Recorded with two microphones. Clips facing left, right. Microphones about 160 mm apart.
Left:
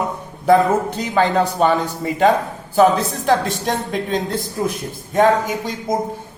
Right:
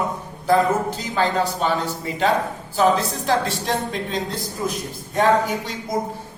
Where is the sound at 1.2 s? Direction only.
55° left (ahead or behind).